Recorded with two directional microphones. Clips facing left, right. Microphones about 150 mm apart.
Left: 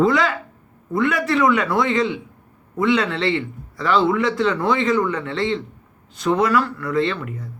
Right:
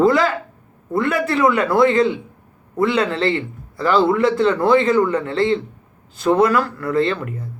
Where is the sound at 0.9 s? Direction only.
35° right (ahead or behind).